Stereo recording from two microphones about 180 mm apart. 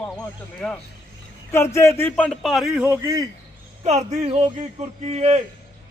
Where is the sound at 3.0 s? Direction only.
15° right (ahead or behind).